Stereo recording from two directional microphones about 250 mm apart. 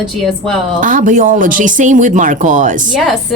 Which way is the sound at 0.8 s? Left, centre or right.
Right.